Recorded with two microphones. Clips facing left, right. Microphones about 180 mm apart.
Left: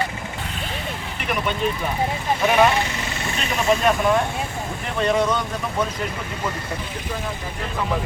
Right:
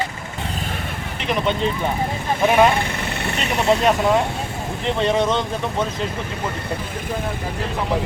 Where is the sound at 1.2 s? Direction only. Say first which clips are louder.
Right 4 dB; 25° right (ahead or behind).